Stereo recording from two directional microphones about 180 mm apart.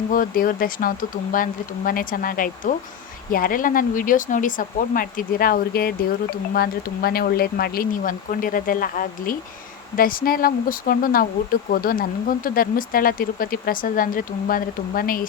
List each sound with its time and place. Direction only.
0.1 s speech: 50° left (ahead or behind)